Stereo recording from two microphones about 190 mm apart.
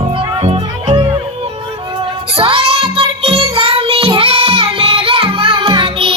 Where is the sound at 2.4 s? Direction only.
30° right (ahead or behind).